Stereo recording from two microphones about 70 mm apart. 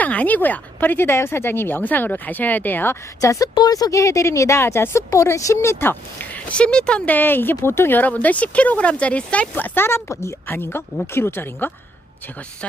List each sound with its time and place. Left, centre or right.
0.0 s speech: left
3.2 s a woman's voice: left
3.6 s a woman's voice: left
5.8 s speech: left
10.1 s a woman's voice: left
10.4 s speech: left